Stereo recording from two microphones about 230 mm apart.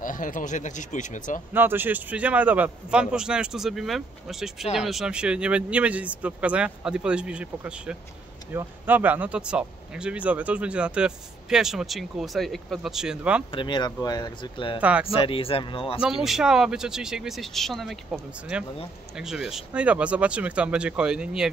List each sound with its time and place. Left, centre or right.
0.0 s speech: left
1.5 s speech: centre
13.5 s speech: left
14.8 s speech: centre
15.1 s speech: left
16.0 s speech: centre